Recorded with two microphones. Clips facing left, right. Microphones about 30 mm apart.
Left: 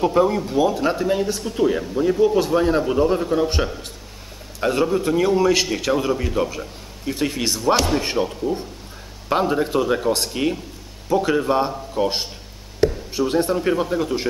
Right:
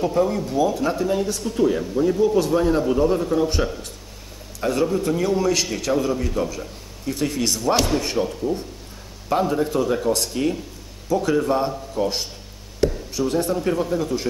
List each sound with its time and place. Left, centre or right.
0.0 s speech: left